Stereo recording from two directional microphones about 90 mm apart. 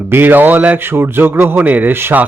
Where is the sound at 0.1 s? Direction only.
20° right (ahead or behind).